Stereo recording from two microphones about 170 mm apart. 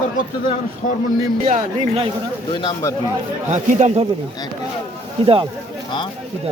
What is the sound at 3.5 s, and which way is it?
Speech, 45° right (ahead or behind).